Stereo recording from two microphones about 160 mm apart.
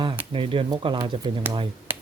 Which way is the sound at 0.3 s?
30° right (ahead or behind).